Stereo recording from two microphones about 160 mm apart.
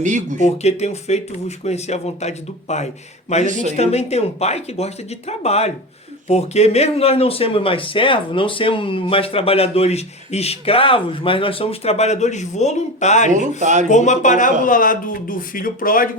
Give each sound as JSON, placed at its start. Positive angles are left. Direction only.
{"t": 0.0, "sound": "speech", "side_deg": -50}
{"t": 0.4, "sound": "speech", "side_deg": 45}
{"t": 3.4, "sound": "speech", "side_deg": -50}
{"t": 3.7, "sound": "speech", "side_deg": 40}
{"t": 13.6, "sound": "speech", "side_deg": -50}
{"t": 13.8, "sound": "speech", "side_deg": 50}